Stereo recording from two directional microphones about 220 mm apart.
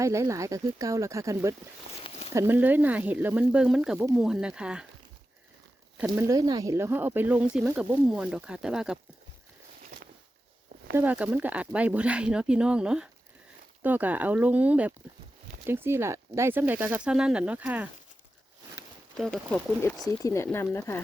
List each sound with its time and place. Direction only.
0.0 s speech: 15° right (ahead or behind)
2.0 s a sound: 25° left (ahead or behind)
2.3 s speech: 10° right (ahead or behind)
6.1 s speech: 15° right (ahead or behind)
10.9 s speech: 5° right (ahead or behind)
19.1 s speech: centre (ahead or behind)